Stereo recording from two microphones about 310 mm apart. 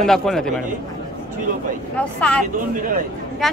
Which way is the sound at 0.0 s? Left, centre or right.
Centre.